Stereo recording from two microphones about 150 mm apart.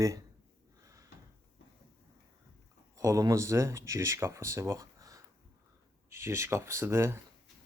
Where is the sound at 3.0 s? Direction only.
20° right (ahead or behind).